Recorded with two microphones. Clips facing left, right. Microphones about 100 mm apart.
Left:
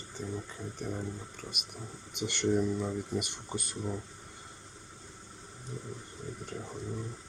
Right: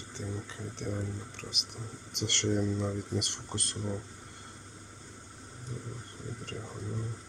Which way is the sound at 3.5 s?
65° right (ahead or behind).